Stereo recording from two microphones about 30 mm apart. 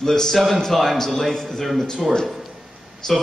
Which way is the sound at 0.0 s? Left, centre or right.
Centre.